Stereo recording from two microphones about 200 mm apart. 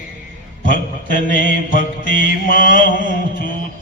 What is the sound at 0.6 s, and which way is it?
Mantra, 40° left (ahead or behind).